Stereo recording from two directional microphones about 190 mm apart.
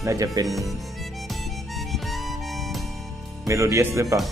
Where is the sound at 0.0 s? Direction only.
15° right (ahead or behind).